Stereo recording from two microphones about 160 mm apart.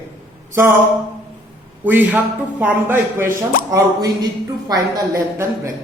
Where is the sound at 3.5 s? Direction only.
60° left (ahead or behind).